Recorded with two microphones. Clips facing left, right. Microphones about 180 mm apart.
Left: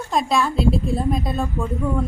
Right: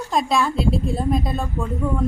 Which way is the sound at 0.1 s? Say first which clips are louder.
Even; centre (ahead or behind).